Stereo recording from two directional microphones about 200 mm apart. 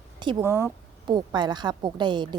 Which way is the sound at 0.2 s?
20° right (ahead or behind).